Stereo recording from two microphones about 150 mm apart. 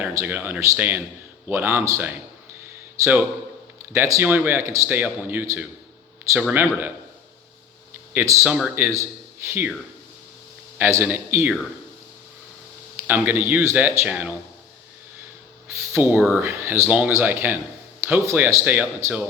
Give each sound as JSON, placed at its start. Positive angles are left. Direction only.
{"t": 0.0, "sound": "speech", "side_deg": -15}
{"t": 8.1, "sound": "speech", "side_deg": -20}
{"t": 10.8, "sound": "speech", "side_deg": -15}
{"t": 13.1, "sound": "speech", "side_deg": -10}
{"t": 15.6, "sound": "speech", "side_deg": -15}